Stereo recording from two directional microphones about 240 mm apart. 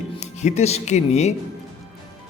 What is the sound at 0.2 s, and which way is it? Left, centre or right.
Speech, left.